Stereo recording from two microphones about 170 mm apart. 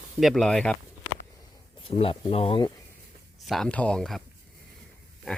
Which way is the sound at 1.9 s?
35° left (ahead or behind).